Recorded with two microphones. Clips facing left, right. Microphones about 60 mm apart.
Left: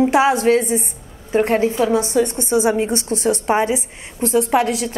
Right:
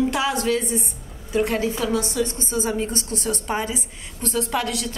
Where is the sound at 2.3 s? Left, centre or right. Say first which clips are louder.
Left 9 dB; left.